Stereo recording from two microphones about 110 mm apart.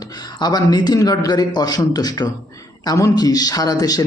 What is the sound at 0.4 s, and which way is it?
A man's voice, 40° left (ahead or behind).